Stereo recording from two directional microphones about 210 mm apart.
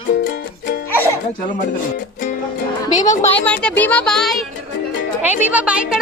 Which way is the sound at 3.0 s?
35° left (ahead or behind).